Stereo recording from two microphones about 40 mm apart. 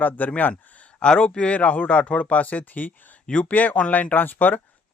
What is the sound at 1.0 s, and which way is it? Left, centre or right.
Speech, left.